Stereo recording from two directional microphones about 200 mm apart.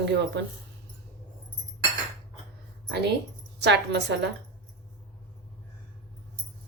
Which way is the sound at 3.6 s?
60° right (ahead or behind).